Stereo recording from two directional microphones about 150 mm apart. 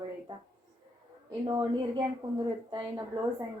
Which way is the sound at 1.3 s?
30° right (ahead or behind).